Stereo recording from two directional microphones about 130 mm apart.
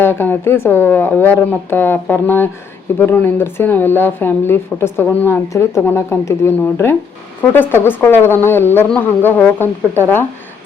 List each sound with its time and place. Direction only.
0.0 s speech: 15° left (ahead or behind)